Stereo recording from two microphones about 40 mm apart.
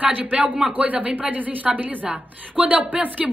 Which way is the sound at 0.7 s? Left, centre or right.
Right.